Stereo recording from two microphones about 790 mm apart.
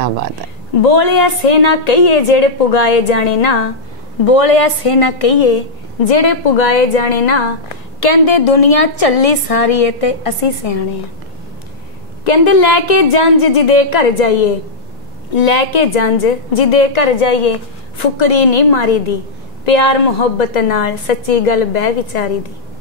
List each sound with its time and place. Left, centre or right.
0.8 s a woman's voice: left
8.0 s a woman's voice: left
12.3 s a woman's voice: left